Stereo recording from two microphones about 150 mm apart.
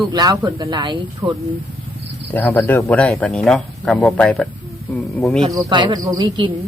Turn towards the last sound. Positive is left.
turn(degrees=-30)  # may be behind; listen again after turning